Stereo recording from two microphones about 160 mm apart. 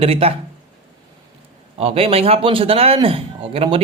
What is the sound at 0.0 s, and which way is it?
Speech, 35° right (ahead or behind).